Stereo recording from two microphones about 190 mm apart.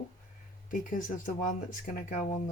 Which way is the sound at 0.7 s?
45° left (ahead or behind).